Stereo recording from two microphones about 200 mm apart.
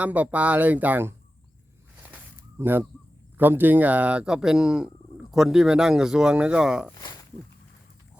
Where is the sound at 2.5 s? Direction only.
10° right (ahead or behind).